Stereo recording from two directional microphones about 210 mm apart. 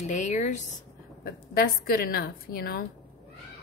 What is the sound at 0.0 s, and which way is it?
Speech, 35° left (ahead or behind).